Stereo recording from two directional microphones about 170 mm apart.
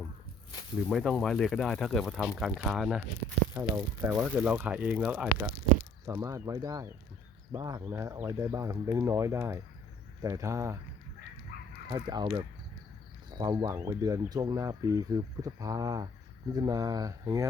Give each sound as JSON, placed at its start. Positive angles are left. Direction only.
{"t": 0.9, "sound": "speech", "side_deg": 0}
{"t": 3.5, "sound": "speech", "side_deg": -15}
{"t": 6.1, "sound": "speech", "side_deg": -20}
{"t": 11.9, "sound": "speech", "side_deg": -25}